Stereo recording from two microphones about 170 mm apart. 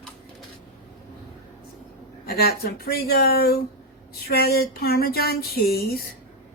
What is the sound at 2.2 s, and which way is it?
Speech, 65° left (ahead or behind).